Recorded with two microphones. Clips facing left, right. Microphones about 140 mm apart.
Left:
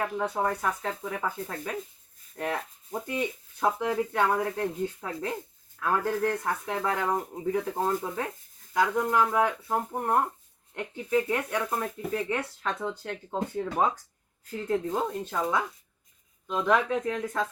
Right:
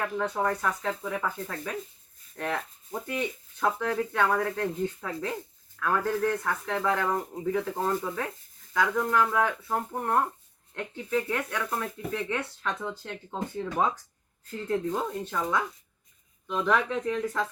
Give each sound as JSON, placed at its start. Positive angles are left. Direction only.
{"t": 0.0, "sound": "speech", "side_deg": 10}
{"t": 16.6, "sound": "speech", "side_deg": 15}